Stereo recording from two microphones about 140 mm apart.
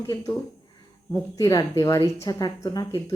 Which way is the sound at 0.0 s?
20° left (ahead or behind).